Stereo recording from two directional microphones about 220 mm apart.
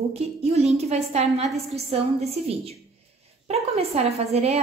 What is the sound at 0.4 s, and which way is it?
A woman's voice, 30° right (ahead or behind).